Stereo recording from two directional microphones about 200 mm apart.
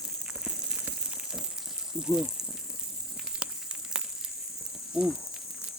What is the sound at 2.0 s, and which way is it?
Speech, 5° right (ahead or behind).